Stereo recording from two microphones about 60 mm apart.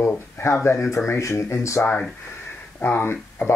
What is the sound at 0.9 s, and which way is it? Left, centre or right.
Speech, left.